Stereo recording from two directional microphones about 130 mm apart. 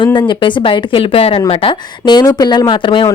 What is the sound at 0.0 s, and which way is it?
Speech, 35° left (ahead or behind).